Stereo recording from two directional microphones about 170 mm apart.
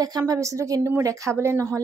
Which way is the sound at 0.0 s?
20° right (ahead or behind).